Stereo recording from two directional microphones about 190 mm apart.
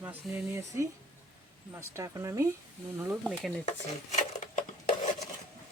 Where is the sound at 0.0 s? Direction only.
10° right (ahead or behind).